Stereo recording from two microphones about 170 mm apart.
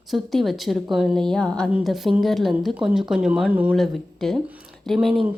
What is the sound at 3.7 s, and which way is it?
Speech, centre (ahead or behind).